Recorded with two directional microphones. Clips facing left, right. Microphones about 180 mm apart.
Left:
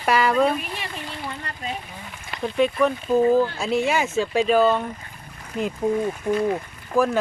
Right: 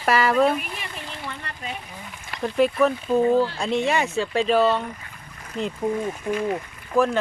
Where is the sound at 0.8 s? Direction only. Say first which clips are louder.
Left 2 dB; 30° left (ahead or behind).